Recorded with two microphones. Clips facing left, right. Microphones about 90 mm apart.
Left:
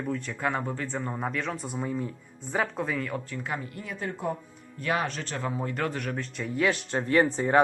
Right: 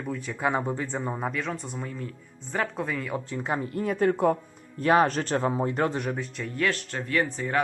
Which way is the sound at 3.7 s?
50° right (ahead or behind).